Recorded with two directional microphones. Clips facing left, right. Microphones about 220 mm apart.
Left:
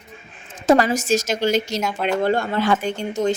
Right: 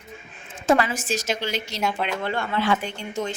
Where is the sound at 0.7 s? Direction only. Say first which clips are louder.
Left 5 dB; 40° left (ahead or behind).